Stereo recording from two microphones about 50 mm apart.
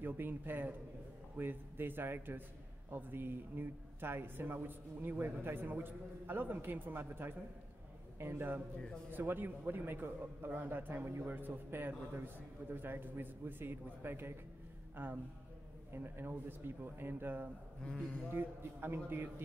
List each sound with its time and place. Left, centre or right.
0.0 s a man's voice: right
8.7 s speech: centre
9.1 s a man's voice: right
17.8 s speech: left
18.3 s a man's voice: right